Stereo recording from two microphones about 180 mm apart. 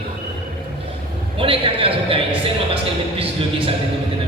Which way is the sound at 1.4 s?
30° right (ahead or behind).